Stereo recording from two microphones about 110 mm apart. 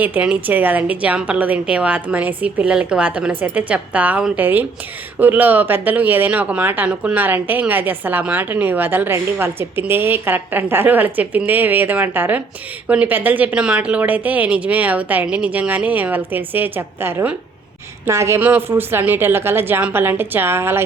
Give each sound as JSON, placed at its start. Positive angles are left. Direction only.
{"t": 0.0, "sound": "a woman's voice", "side_deg": -15}